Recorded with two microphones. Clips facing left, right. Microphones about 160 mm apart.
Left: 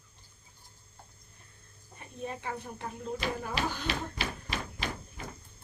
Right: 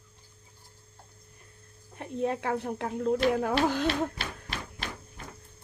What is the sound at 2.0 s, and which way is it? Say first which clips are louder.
Speech: right 10 dB; 75° right (ahead or behind).